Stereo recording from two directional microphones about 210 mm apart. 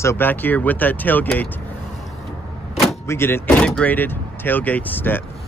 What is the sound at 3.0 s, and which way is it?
Speech, 10° left (ahead or behind).